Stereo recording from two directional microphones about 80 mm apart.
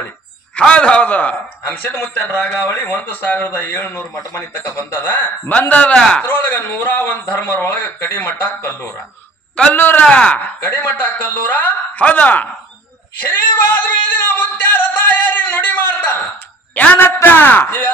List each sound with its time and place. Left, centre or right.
0.6 s speech: centre
9.7 s speech: left
10.0 s speech: centre
13.3 s singing: left
16.7 s speech: left